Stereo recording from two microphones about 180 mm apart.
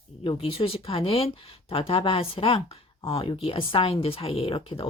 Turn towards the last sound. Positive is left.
turn(degrees=30)  # may be behind; listen again after turning